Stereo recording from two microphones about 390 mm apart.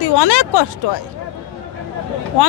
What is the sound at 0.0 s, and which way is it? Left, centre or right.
Speech, left.